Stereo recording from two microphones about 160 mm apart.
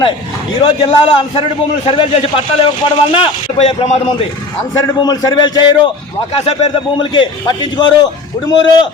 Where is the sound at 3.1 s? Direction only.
35° left (ahead or behind).